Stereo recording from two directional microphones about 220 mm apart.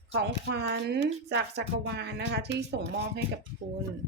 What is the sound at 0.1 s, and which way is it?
A woman's voice, 55° right (ahead or behind).